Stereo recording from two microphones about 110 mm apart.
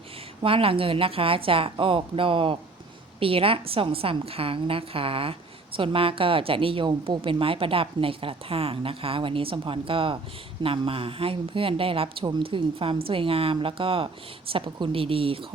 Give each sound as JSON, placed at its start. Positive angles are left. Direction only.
{"t": 0.4, "sound": "a woman's voice", "side_deg": -55}